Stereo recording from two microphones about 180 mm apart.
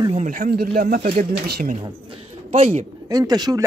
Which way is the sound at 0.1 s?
45° right (ahead or behind).